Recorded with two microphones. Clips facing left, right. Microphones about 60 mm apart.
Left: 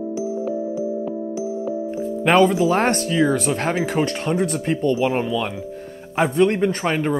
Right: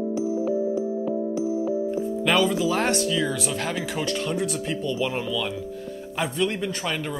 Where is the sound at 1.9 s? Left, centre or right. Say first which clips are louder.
Left 8 dB; left.